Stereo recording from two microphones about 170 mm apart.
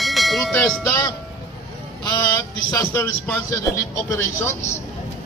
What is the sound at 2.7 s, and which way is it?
Speech, 20° left (ahead or behind).